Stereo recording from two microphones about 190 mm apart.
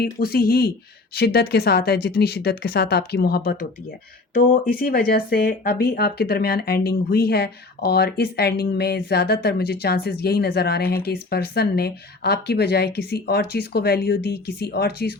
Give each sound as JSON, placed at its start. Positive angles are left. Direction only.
{"t": 0.0, "sound": "speech", "side_deg": 55}